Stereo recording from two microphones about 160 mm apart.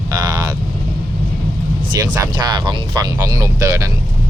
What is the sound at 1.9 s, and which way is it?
Speech, 25° right (ahead or behind).